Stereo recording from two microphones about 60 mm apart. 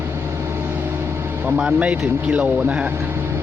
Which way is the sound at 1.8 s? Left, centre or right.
Right.